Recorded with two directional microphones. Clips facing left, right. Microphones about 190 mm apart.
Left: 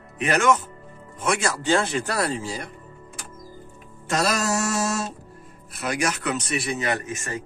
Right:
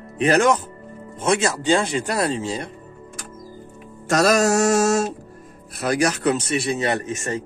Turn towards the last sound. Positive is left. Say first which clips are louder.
# right 4 dB
turn(degrees=-30)  # may be behind; listen again after turning